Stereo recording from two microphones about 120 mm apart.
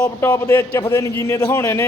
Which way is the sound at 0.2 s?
25° left (ahead or behind).